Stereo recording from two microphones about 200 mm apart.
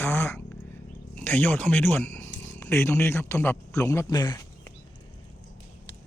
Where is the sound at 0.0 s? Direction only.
10° left (ahead or behind).